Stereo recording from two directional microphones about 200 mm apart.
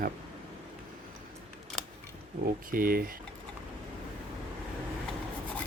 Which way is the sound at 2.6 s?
45° right (ahead or behind).